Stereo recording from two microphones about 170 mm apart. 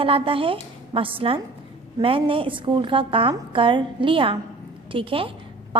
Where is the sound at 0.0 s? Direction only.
30° right (ahead or behind).